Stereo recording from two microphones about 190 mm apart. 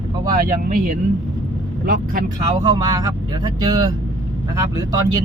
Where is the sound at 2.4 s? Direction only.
25° right (ahead or behind).